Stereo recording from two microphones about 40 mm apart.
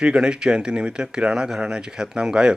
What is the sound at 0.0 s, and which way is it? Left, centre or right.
A man's voice, right.